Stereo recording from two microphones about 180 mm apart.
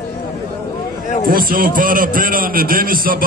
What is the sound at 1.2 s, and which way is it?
A man's voice, 55° right (ahead or behind).